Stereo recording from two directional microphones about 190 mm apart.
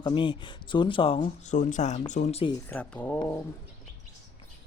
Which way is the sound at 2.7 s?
5° left (ahead or behind).